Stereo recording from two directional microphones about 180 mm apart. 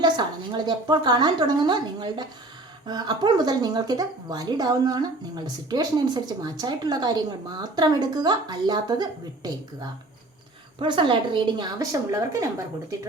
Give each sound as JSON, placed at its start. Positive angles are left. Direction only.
{"t": 0.0, "sound": "speech", "side_deg": -25}